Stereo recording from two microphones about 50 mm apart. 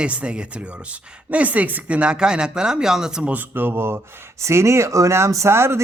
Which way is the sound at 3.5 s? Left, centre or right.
Right.